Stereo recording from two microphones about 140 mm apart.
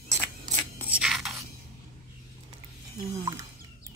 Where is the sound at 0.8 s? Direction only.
5° right (ahead or behind).